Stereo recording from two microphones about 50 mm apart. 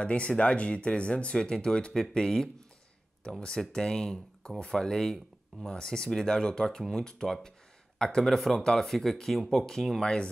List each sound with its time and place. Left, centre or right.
0.0 s speech: left
2.0 s speech: centre